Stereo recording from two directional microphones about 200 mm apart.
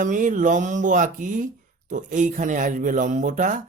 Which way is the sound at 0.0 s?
40° right (ahead or behind).